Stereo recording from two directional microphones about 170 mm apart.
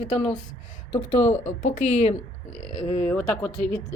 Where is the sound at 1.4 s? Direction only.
40° left (ahead or behind).